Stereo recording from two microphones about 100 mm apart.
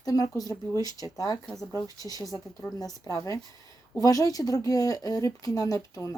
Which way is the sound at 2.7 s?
35° left (ahead or behind).